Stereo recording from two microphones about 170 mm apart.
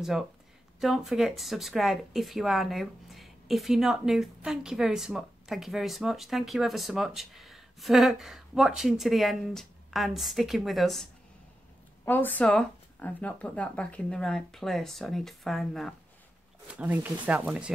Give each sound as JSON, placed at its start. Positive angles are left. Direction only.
{"t": 0.7, "sound": "speech", "side_deg": 0}
{"t": 12.0, "sound": "speech", "side_deg": 10}